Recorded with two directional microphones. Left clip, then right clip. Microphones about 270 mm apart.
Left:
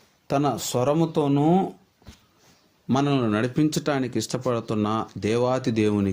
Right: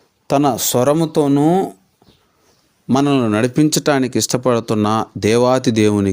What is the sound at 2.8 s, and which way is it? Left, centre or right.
Speech, right.